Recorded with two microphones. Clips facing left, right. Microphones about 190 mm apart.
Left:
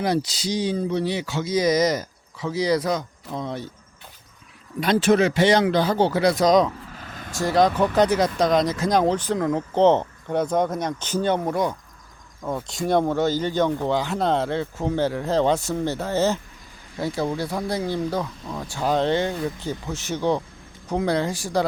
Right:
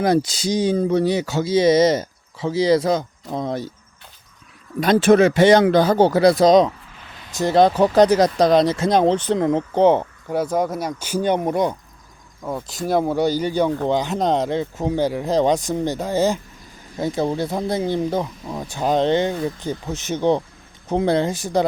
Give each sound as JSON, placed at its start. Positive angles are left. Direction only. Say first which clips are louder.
{"t": 0.0, "sound": "speech", "louder": "right 5 dB", "side_deg": -45}
{"t": 3.4, "sound": "speech", "louder": "right 6 dB", "side_deg": -40}
{"t": 4.8, "sound": "speech", "louder": "right 5 dB", "side_deg": -50}
{"t": 7.0, "sound": "vehicle", "louder": "left 5 dB", "side_deg": 45}
{"t": 7.3, "sound": "speech", "louder": "right 4 dB", "side_deg": -20}
{"t": 9.7, "sound": "speech", "louder": "even", "side_deg": -10}
{"t": 12.4, "sound": "speech", "louder": "even", "side_deg": 0}